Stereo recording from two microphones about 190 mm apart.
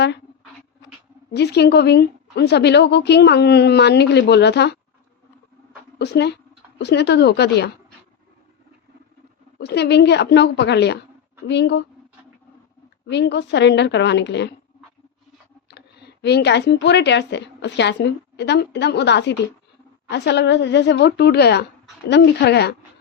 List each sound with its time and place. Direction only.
1.3 s a woman's voice: 60° left (ahead or behind)
6.0 s a woman's voice: 60° left (ahead or behind)
9.6 s a woman's voice: 60° left (ahead or behind)
13.1 s a woman's voice: 65° left (ahead or behind)
15.7 s a woman's voice: 60° left (ahead or behind)